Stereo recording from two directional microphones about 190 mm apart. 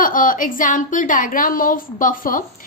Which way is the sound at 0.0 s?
45° left (ahead or behind).